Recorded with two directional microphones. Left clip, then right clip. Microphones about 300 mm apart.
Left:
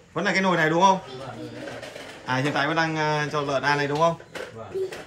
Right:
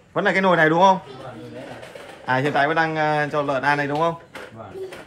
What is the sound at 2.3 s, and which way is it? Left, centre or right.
A man's voice, centre.